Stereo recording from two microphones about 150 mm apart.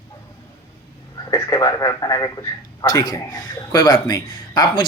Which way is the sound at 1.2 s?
20° left (ahead or behind).